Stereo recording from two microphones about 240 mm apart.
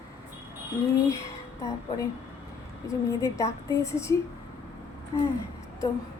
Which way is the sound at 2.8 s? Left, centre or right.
Centre.